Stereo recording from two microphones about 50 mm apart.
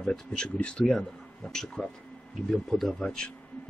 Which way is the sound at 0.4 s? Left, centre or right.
Centre.